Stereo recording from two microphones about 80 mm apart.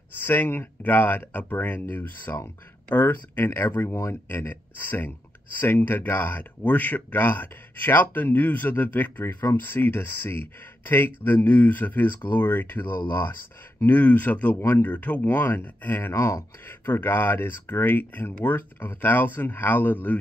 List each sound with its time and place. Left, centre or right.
0.2 s speech: left
14.6 s speech: left
14.9 s speech: left